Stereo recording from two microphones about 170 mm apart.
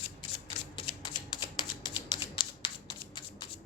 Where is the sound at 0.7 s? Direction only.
30° left (ahead or behind).